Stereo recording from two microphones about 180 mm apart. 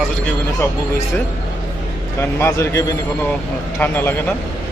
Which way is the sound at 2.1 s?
15° left (ahead or behind).